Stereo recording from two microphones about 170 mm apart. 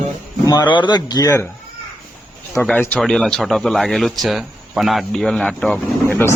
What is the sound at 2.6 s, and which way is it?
Speech, 10° left (ahead or behind).